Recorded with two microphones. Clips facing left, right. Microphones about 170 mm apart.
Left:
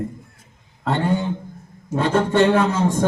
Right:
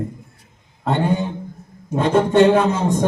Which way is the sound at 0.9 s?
15° right (ahead or behind).